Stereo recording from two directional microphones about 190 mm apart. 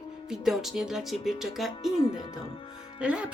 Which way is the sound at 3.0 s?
5° right (ahead or behind).